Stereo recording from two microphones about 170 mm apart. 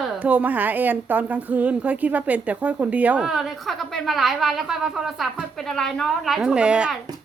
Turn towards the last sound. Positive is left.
turn(degrees=-5)  # may be behind; listen again after turning